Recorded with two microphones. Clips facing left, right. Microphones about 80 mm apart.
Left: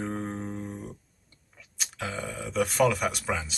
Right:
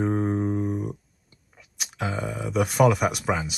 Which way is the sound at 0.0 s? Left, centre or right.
Right.